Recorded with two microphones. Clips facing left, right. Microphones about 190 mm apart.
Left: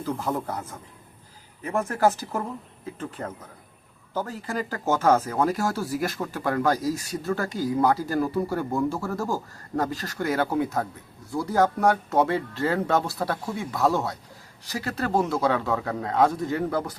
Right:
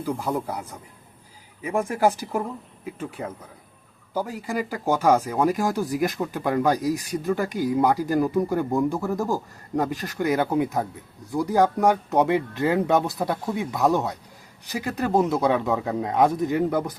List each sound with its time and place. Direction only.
0.0 s speech: 10° right (ahead or behind)